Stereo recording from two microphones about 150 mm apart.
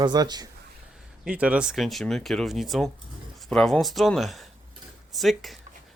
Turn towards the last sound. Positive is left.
turn(degrees=0)  # may be behind; listen again after turning